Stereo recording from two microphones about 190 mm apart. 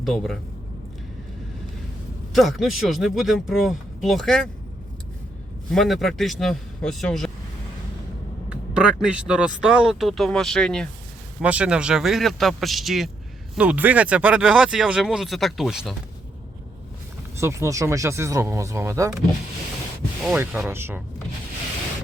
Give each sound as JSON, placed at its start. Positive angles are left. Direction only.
{"t": 0.0, "sound": "speech", "side_deg": 0}
{"t": 2.3, "sound": "speech", "side_deg": 0}
{"t": 5.7, "sound": "speech", "side_deg": 0}
{"t": 8.4, "sound": "speech", "side_deg": -5}
{"t": 17.3, "sound": "speech", "side_deg": -15}
{"t": 20.2, "sound": "speech", "side_deg": -5}